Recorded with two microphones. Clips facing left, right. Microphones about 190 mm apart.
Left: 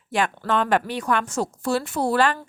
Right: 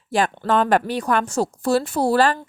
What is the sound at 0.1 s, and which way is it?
A woman's voice, 35° right (ahead or behind).